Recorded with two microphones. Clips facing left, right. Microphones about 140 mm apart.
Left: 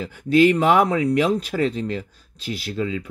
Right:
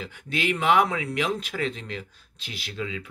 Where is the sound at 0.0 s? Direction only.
40° left (ahead or behind).